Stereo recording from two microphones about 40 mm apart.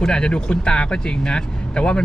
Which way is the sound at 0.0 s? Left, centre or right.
Left.